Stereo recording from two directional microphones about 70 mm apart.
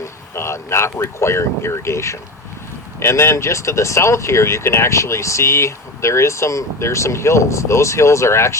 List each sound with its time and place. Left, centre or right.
0.0 s speech: left